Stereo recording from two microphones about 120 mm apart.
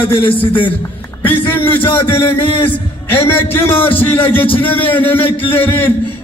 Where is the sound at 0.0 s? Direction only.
45° left (ahead or behind).